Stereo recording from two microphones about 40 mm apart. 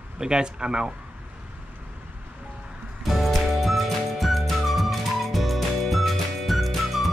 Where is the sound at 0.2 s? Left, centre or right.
Right.